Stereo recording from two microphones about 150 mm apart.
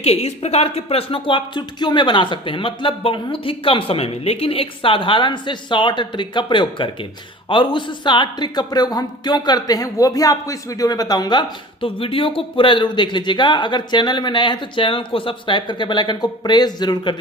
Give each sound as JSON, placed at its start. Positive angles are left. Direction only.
{"t": 0.0, "sound": "speech", "side_deg": 40}